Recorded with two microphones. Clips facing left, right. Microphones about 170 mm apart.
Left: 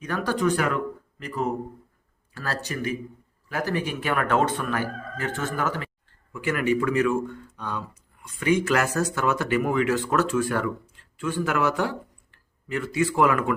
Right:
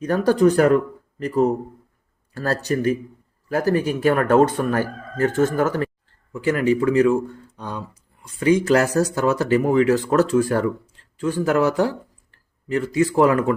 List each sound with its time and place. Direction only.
0.0 s speech: 40° right (ahead or behind)